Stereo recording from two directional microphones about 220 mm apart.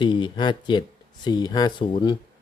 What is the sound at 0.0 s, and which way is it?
Speech, 20° left (ahead or behind).